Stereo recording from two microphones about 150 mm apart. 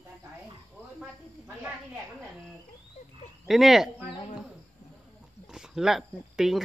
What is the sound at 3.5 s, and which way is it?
Speech, centre (ahead or behind).